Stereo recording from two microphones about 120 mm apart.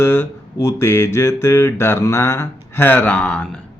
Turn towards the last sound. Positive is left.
turn(degrees=10)  # may be behind; listen again after turning